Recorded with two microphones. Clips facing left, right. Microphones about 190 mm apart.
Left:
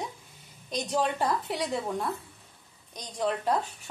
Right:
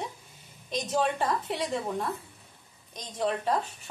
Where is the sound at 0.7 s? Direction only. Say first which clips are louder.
Even; centre (ahead or behind).